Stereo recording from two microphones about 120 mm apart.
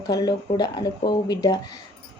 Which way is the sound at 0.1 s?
35° left (ahead or behind).